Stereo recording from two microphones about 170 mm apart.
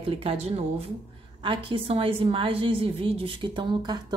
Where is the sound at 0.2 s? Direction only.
35° right (ahead or behind).